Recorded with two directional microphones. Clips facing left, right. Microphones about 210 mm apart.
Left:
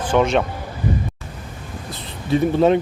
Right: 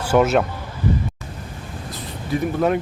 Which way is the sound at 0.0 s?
5° right (ahead or behind).